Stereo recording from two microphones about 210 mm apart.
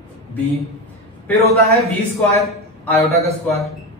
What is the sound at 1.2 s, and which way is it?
Speech, 15° left (ahead or behind).